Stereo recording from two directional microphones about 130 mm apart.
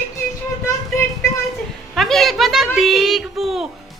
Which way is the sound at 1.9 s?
Centre (ahead or behind).